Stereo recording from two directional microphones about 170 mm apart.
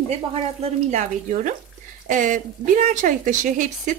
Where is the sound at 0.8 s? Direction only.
45° right (ahead or behind).